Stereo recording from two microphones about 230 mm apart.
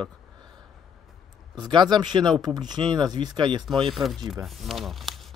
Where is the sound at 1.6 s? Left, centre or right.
Centre.